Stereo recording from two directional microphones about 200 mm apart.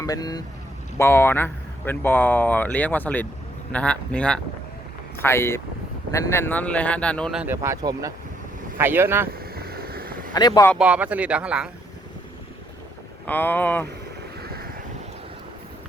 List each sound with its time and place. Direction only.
0.0 s speech: 20° left (ahead or behind); by 9.3 s 10° right (ahead or behind)
9.4 s vehicle: 50° right (ahead or behind)
10.3 s speech: 20° left (ahead or behind)
10.8 s speech: 5° right (ahead or behind)
13.2 s speech: 10° left (ahead or behind)
14.4 s vehicle: 50° right (ahead or behind)